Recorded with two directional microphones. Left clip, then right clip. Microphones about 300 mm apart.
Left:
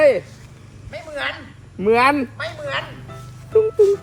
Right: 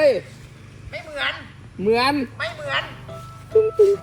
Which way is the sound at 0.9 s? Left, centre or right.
Left.